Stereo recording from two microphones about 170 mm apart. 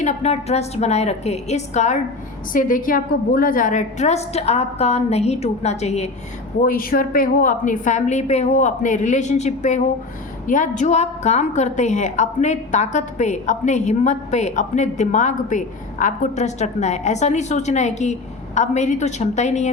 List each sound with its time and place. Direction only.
0.0 s a woman's voice: 40° left (ahead or behind)
2.5 s a woman's voice: 55° left (ahead or behind)
6.7 s a woman's voice: 55° left (ahead or behind)